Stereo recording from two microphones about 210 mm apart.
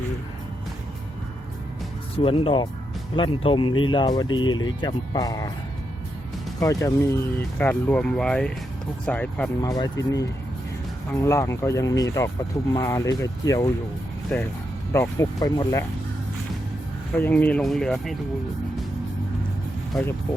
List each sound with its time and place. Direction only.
2.1 s speech: 25° left (ahead or behind)
6.6 s speech: 15° left (ahead or behind)
9.6 s speech: 20° left (ahead or behind)
14.3 s speech: 5° left (ahead or behind)
14.9 s speech: 15° left (ahead or behind)
17.2 s speech: 10° left (ahead or behind)